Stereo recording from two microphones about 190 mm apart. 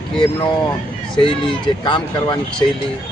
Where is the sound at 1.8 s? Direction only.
25° left (ahead or behind).